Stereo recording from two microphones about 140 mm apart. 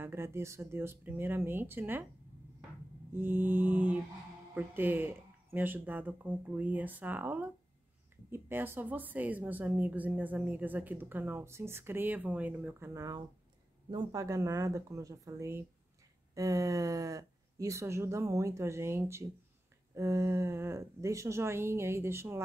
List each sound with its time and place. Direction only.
0.0 s speech: 15° right (ahead or behind)
3.1 s speech: 15° right (ahead or behind)